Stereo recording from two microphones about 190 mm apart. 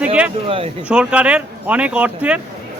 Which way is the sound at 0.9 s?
5° right (ahead or behind).